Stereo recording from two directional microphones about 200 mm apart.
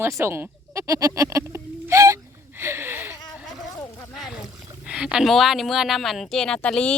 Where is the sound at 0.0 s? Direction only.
15° right (ahead or behind).